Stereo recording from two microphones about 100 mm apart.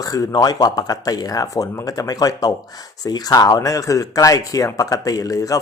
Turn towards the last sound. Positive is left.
turn(degrees=35)  # may be behind; listen again after turning